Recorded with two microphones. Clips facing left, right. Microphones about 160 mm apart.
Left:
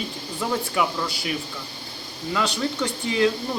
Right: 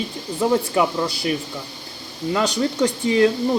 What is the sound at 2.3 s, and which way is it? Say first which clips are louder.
Speech: right 4 dB; 35° right (ahead or behind).